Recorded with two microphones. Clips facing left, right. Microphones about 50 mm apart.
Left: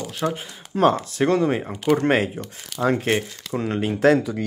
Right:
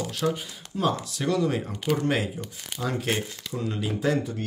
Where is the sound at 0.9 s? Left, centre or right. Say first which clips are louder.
Left 6 dB; left.